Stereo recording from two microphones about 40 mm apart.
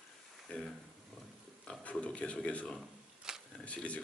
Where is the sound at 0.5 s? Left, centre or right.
Left.